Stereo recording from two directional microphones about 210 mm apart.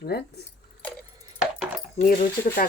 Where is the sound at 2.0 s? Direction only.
45° left (ahead or behind).